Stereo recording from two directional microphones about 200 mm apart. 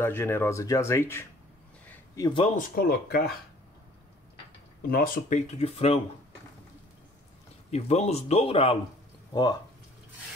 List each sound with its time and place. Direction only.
0.0 s speech: 10° left (ahead or behind)
1.9 s a sound: 20° left (ahead or behind)
2.7 s speech: 50° left (ahead or behind)
4.8 s speech: 45° left (ahead or behind); by 5.9 s 30° left (ahead or behind)
7.7 s speech: 30° left (ahead or behind)